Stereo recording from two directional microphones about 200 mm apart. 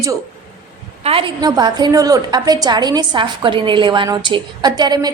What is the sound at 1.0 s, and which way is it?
A woman's voice, 30° right (ahead or behind).